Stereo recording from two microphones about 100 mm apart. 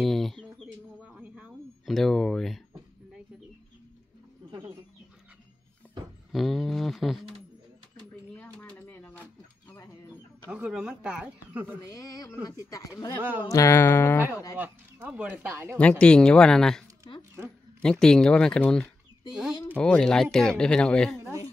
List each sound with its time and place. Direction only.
0.0 s bird: centre (ahead or behind)
1.0 s a sound: 10° right (ahead or behind)
1.9 s a sound: centre (ahead or behind)
4.5 s bird: 35° right (ahead or behind)
6.3 s speech: centre (ahead or behind)
8.6 s a sound: 15° left (ahead or behind)
10.5 s speech: 10° right (ahead or behind)
11.8 s a woman's voice: 35° left (ahead or behind)
13.5 s music: 30° left (ahead or behind)
14.6 s speech: 15° right (ahead or behind)
15.8 s speech: 10° left (ahead or behind)
17.1 s zipper: 55° left (ahead or behind)
17.8 s speech: 5° left (ahead or behind)